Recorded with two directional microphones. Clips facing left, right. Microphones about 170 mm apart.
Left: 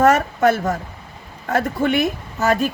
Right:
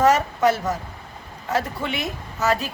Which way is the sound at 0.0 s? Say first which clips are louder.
Left 3 dB; 55° left (ahead or behind).